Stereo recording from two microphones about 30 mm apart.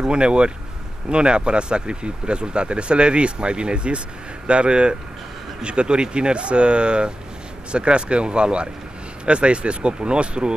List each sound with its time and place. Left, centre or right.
0.0 s speech: right